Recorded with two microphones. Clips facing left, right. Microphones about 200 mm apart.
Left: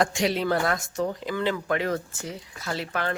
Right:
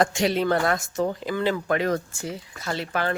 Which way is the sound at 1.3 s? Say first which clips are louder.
Right 2 dB; 40° right (ahead or behind).